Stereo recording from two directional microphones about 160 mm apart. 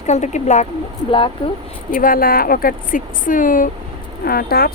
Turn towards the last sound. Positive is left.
turn(degrees=70)  # may be behind; listen again after turning